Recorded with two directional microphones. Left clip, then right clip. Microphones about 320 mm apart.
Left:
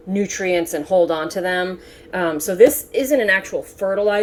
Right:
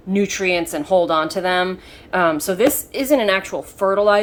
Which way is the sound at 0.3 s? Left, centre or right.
Right.